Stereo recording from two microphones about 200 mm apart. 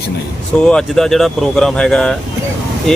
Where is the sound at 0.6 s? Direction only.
5° left (ahead or behind).